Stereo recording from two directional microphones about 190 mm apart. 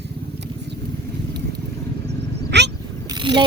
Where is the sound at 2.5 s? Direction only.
65° right (ahead or behind).